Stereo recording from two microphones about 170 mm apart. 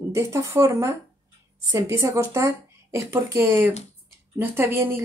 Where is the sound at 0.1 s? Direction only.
15° right (ahead or behind).